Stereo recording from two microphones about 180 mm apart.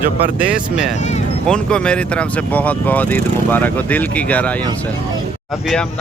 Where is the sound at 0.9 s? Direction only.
40° left (ahead or behind).